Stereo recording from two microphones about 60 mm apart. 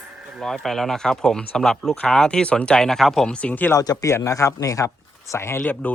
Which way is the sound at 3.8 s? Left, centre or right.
Left.